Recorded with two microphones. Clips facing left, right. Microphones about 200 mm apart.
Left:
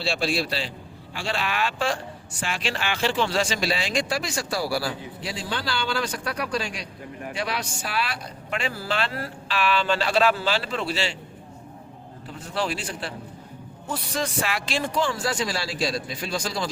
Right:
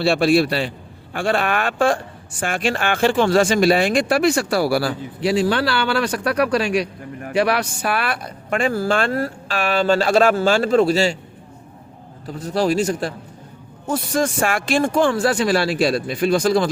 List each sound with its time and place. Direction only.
0.0 s speech: 60° right (ahead or behind); by 11.2 s 45° right (ahead or behind)
12.3 s speech: 40° right (ahead or behind); by 16.6 s 55° right (ahead or behind)